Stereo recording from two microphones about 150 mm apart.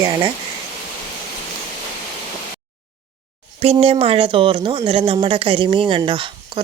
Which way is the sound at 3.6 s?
40° right (ahead or behind).